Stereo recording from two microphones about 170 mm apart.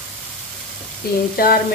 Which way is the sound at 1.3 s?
60° left (ahead or behind).